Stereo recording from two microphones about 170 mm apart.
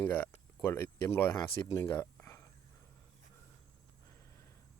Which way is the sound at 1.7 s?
15° left (ahead or behind).